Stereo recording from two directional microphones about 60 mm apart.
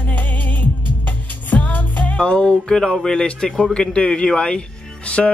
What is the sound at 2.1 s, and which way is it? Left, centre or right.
A man's voice, centre.